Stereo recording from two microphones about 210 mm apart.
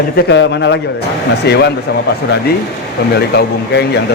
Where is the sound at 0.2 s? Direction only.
55° left (ahead or behind).